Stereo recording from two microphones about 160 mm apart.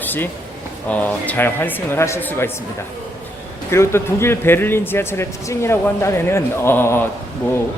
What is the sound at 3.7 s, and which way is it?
Speech, 15° left (ahead or behind).